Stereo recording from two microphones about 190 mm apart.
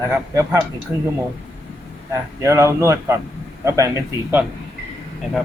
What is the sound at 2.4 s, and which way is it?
A man's voice, 15° right (ahead or behind).